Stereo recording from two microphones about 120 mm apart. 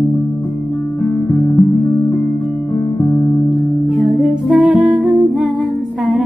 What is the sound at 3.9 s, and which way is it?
Music, centre (ahead or behind).